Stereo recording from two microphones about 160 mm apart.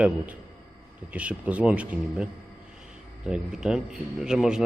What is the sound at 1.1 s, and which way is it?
Speech, 10° right (ahead or behind).